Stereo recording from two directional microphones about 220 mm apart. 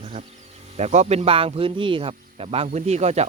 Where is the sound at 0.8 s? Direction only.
30° right (ahead or behind).